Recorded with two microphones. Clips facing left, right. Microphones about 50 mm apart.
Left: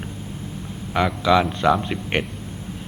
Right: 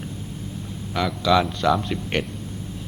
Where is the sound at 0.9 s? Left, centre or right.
Left.